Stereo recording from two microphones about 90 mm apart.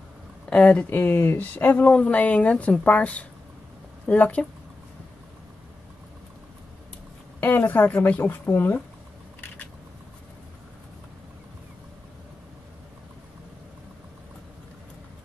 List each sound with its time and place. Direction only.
0.5 s speech: 15° left (ahead or behind)
0.8 s speech: 25° left (ahead or behind)
7.3 s speech: 20° left (ahead or behind)